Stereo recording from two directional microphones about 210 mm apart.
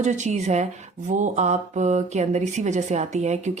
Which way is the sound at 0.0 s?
35° right (ahead or behind).